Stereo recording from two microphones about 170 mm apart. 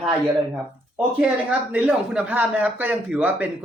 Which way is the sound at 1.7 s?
10° right (ahead or behind).